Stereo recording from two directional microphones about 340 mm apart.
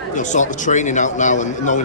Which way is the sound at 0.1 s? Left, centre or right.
Left.